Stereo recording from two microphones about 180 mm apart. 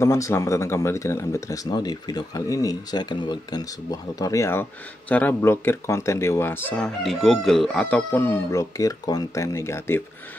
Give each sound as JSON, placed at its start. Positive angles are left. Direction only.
{"t": 0.0, "sound": "speech", "side_deg": 15}